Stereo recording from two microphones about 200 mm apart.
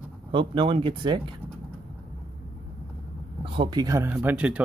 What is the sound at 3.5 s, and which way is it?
Speech, 20° right (ahead or behind).